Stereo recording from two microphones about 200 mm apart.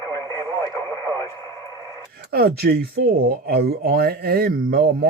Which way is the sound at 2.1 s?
50° right (ahead or behind).